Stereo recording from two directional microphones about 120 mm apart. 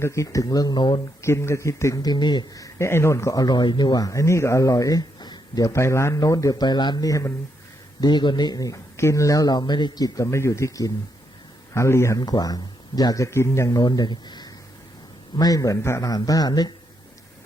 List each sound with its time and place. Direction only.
0.0 s speech: 25° left (ahead or behind); by 1.0 s 40° left (ahead or behind)
1.2 s speech: 20° left (ahead or behind)
8.0 s speech: 40° left (ahead or behind)